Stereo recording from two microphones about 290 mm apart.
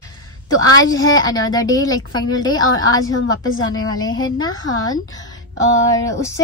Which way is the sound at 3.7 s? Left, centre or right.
Left.